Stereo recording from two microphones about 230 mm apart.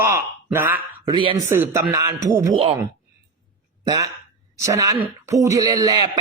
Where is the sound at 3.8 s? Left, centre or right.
Centre.